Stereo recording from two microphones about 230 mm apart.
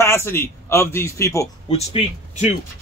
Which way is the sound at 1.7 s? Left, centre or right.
Left.